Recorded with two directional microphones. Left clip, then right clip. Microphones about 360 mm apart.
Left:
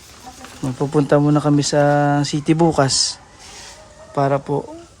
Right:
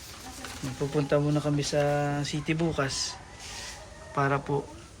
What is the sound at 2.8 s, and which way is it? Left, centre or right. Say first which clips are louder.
Speech: left 13 dB; left.